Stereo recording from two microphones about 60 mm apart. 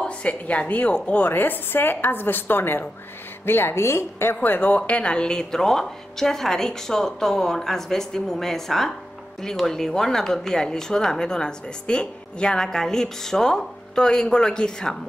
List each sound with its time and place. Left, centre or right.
0.0 s a woman's voice: left
4.4 s speech: left; by 15.0 s centre